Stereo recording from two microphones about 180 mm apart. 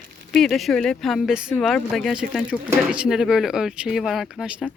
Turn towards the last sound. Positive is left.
turn(degrees=-5)  # may be behind; listen again after turning